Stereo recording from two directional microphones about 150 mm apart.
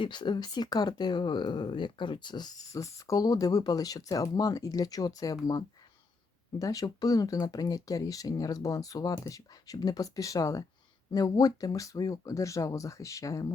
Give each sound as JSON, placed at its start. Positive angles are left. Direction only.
{"t": 0.0, "sound": "speech", "side_deg": 30}
{"t": 6.6, "sound": "speech", "side_deg": 25}